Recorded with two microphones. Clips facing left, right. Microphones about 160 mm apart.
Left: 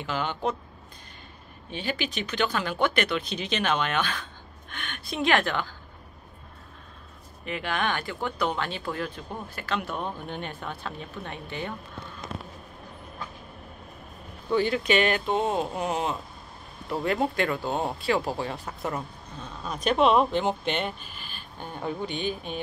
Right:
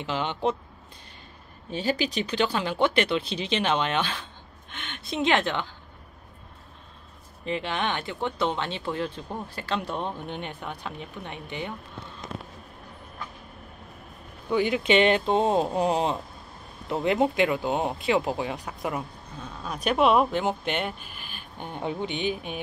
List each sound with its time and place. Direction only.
0.0 s speech: 25° right (ahead or behind)
1.7 s speech: 35° right (ahead or behind); by 5.8 s 20° right (ahead or behind)
7.4 s speech: 25° right (ahead or behind)
14.5 s speech: 15° right (ahead or behind); by 16.2 s 30° right (ahead or behind)
16.9 s speech: 20° right (ahead or behind)
21.5 s speech: 20° right (ahead or behind)